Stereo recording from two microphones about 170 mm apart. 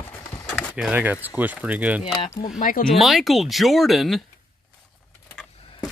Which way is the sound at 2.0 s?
30° left (ahead or behind).